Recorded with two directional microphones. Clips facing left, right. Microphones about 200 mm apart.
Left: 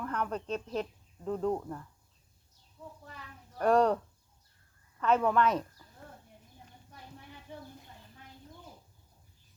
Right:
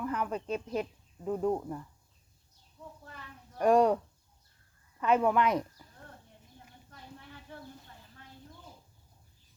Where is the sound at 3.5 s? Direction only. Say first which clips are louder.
Right 1 dB; 10° right (ahead or behind).